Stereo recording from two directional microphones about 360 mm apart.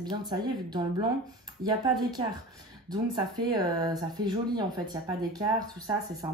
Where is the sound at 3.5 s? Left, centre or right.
Centre.